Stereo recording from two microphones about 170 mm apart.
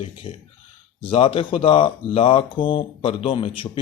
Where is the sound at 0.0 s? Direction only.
35° left (ahead or behind).